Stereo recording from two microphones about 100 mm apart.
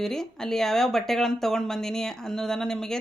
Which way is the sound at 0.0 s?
5° left (ahead or behind).